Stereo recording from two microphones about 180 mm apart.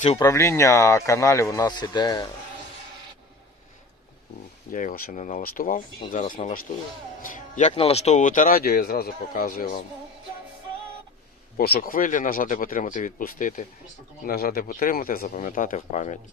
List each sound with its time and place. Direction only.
0.2 s speech: 15° left (ahead or behind)
4.7 s speech: 50° left (ahead or behind)
7.2 s music: 45° left (ahead or behind)
7.8 s speech: 35° left (ahead or behind); by 9.7 s 50° left (ahead or behind)
11.5 s speech: 55° left (ahead or behind); by 16.1 s 40° left (ahead or behind)